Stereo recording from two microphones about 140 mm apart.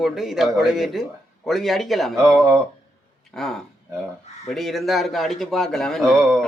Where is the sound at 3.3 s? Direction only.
5° left (ahead or behind).